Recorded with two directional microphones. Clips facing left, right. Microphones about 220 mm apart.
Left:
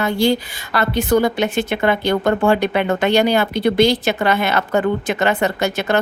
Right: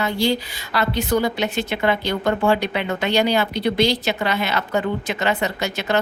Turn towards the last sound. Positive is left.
turn(degrees=50)  # may be behind; listen again after turning